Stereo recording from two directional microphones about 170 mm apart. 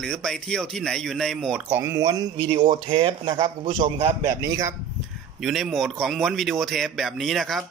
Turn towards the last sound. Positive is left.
turn(degrees=0)  # may be behind; listen again after turning